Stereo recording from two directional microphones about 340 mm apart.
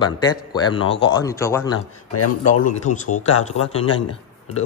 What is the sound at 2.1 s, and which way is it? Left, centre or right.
Speech, left.